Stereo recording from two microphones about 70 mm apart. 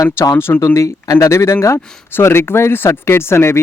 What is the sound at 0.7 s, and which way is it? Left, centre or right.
Speech, left.